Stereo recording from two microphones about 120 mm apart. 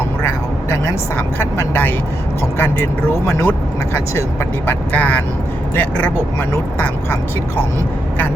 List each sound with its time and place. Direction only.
0.2 s speech: 20° left (ahead or behind)
4.6 s speech: 15° left (ahead or behind)